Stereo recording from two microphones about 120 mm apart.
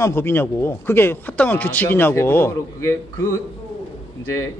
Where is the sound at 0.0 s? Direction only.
20° left (ahead or behind).